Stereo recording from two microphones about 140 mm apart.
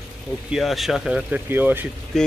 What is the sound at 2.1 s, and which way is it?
Speech, 5° left (ahead or behind).